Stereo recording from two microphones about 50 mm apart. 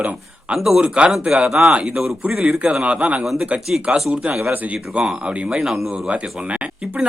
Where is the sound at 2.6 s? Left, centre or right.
Right.